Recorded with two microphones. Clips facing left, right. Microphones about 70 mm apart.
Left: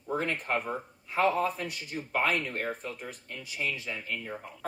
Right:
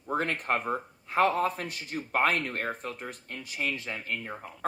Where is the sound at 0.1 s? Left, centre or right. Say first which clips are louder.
Right 2 dB; right.